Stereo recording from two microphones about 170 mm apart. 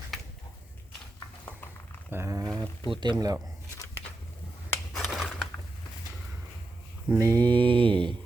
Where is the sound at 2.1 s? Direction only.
15° right (ahead or behind).